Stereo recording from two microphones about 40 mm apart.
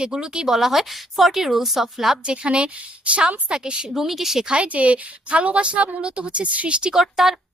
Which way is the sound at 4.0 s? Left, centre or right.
Centre.